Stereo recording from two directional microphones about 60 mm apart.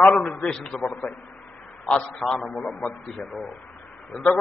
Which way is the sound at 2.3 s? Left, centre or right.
Centre.